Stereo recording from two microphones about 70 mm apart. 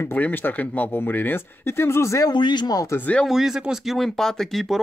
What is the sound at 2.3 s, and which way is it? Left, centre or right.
Speech, left.